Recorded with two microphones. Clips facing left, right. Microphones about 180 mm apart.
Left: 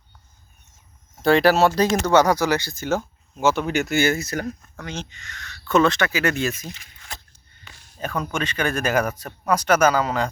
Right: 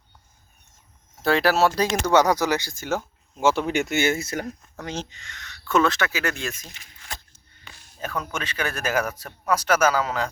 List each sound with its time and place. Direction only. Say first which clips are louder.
1.2 s speech: left 4 dB; 5° right (ahead or behind)
2.1 s speech: left 1 dB; 20° right (ahead or behind)
3.4 s speech: left 1 dB; 30° right (ahead or behind)
4.8 s speech: right 1 dB; 35° right (ahead or behind)
5.3 s speech: left 3 dB; 20° right (ahead or behind)
5.6 s speech: left 3 dB; 5° right (ahead or behind)
8.0 s speech: left 4 dB; 5° right (ahead or behind)